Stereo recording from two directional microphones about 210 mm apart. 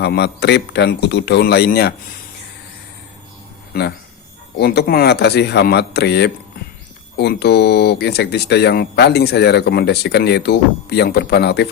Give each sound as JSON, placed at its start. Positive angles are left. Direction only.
{"t": 0.0, "sound": "speech", "side_deg": 50}
{"t": 3.7, "sound": "speech", "side_deg": 50}